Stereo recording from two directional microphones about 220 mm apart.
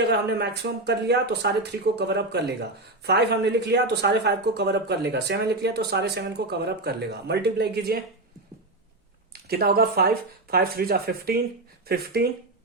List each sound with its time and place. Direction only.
0.0 s speech: 50° right (ahead or behind)
9.3 s speech: 45° right (ahead or behind)